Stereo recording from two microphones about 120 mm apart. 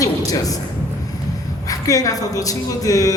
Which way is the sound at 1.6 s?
30° left (ahead or behind).